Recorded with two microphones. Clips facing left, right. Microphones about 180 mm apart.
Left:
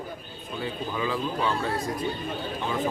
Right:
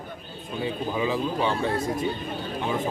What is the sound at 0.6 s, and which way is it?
Speech, 20° right (ahead or behind).